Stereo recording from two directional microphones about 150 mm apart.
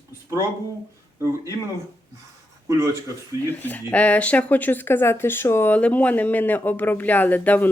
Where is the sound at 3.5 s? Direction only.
10° left (ahead or behind).